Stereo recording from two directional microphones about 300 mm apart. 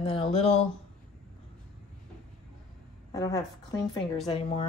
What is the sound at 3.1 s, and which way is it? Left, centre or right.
A woman's voice, centre.